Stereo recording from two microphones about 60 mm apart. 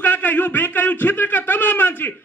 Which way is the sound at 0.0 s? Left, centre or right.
Left.